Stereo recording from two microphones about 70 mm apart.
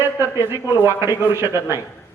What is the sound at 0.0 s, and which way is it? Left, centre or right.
A man's voice, right.